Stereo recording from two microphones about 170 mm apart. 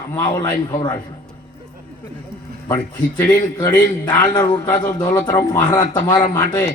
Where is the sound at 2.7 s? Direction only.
10° left (ahead or behind).